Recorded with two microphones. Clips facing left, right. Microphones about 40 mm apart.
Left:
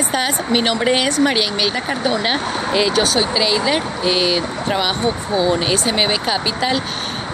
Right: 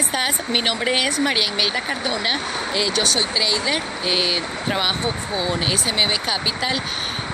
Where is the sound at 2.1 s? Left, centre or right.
Centre.